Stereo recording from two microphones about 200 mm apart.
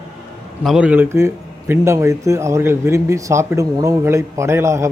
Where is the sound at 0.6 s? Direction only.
5° right (ahead or behind).